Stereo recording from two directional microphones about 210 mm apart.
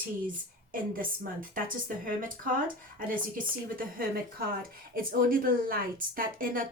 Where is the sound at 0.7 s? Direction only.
40° right (ahead or behind).